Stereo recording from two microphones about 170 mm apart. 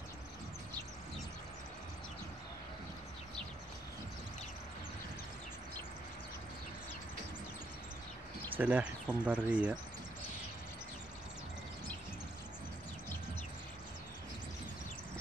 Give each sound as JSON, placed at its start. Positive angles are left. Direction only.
{"t": 8.5, "sound": "speech", "side_deg": -10}